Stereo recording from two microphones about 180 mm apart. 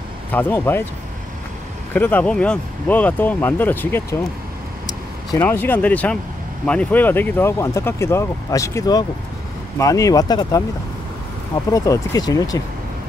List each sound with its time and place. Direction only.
0.3 s speech: 10° left (ahead or behind)
2.0 s speech: 10° left (ahead or behind)
11.7 s speech: 20° left (ahead or behind)